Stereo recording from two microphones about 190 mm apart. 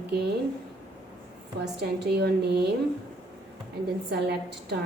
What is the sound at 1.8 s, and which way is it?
Speech, 60° right (ahead or behind).